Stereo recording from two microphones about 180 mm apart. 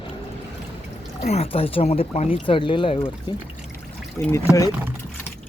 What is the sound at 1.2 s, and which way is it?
Speech, 35° left (ahead or behind).